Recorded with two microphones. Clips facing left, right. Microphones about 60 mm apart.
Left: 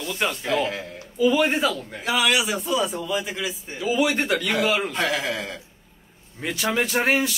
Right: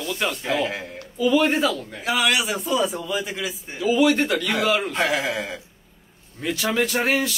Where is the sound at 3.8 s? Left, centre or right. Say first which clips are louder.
Right 4 dB; centre.